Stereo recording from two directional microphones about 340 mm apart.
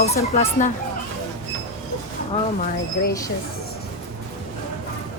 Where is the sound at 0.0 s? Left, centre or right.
Centre.